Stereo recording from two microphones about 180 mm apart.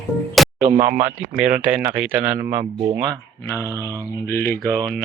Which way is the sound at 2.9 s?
20° right (ahead or behind).